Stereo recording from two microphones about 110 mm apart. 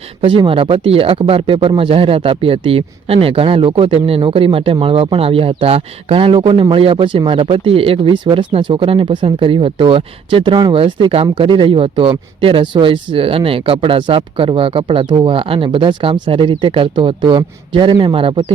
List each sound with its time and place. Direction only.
0.2 s speech: 55° right (ahead or behind)